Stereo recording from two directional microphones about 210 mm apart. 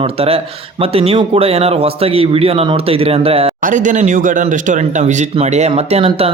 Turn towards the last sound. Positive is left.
turn(degrees=-30)  # may be behind; listen again after turning